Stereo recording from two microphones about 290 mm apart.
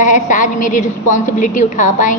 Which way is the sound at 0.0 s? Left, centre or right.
Left.